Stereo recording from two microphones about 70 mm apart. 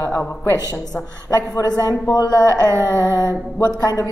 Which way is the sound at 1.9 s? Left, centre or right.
Left.